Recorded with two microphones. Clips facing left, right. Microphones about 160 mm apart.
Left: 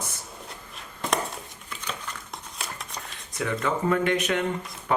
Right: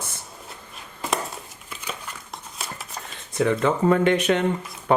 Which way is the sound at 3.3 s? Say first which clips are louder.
Right 6 dB; 30° right (ahead or behind).